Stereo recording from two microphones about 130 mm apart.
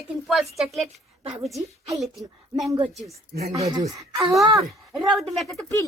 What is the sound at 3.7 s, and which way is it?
Speech, 30° right (ahead or behind).